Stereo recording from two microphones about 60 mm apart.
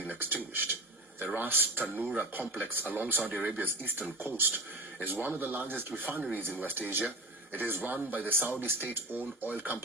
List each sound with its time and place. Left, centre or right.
0.1 s speech: right